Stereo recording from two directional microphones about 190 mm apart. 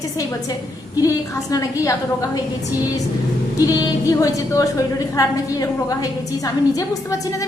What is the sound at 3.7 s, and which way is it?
A woman's voice, 20° left (ahead or behind).